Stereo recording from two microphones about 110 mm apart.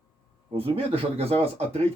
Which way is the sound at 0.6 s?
65° right (ahead or behind).